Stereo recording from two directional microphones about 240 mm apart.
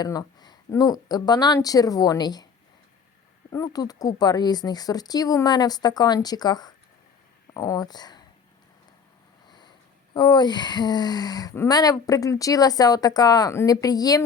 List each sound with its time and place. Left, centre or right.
0.0 s speech: centre
3.5 s speech: centre
9.5 s a sound: centre
10.2 s speech: centre